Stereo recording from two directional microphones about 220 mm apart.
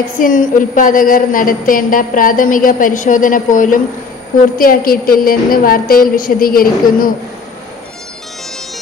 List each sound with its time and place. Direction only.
0.2 s a woman's voice: 35° left (ahead or behind)